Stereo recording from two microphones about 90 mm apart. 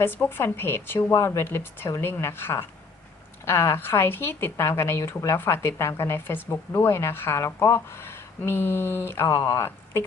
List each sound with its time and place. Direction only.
0.0 s a woman's voice: 25° left (ahead or behind)